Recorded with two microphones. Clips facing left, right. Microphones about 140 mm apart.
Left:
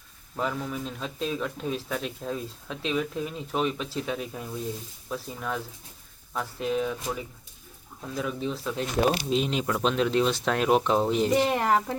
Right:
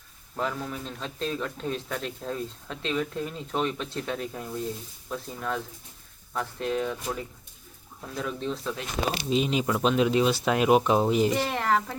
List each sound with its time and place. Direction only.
0.3 s speech: 5° left (ahead or behind)
9.0 s speech: 60° left (ahead or behind)
9.3 s speech: centre (ahead or behind)
11.3 s speech: 20° left (ahead or behind)